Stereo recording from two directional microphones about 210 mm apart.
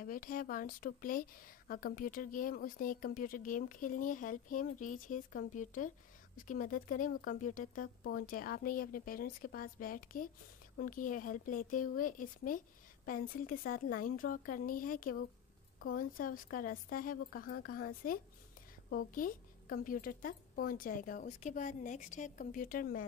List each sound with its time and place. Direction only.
0.0 s a woman's voice: 40° left (ahead or behind)